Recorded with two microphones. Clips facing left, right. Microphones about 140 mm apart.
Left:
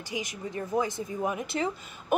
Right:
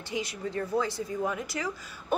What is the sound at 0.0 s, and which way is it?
A woman's voice, 15° left (ahead or behind).